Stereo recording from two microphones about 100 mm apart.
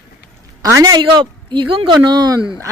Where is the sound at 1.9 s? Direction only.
45° right (ahead or behind).